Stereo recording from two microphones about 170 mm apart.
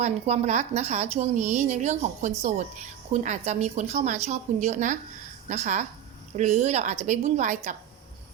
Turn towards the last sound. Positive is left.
turn(degrees=-45)  # may be behind; listen again after turning